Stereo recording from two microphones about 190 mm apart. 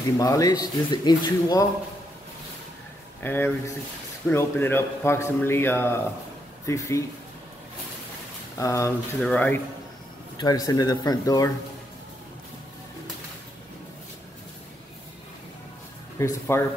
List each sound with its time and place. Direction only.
0.2 s speech: 15° left (ahead or behind)
3.2 s a man's voice: 10° left (ahead or behind)
8.5 s a man's voice: 15° left (ahead or behind)
10.3 s speech: 20° left (ahead or behind)
16.2 s a man's voice: 15° left (ahead or behind)